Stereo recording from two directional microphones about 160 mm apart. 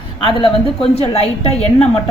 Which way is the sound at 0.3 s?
35° left (ahead or behind).